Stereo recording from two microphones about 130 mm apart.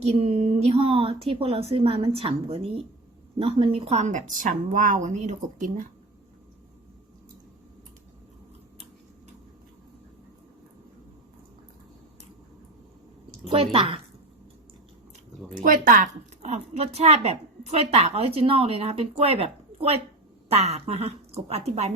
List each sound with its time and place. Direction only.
0.0 s a woman's voice: 55° right (ahead or behind); by 5.9 s 80° right
13.4 s a sound: 50° right (ahead or behind)
15.6 s a woman's voice: 90° right; by 21.9 s 55° right (ahead or behind)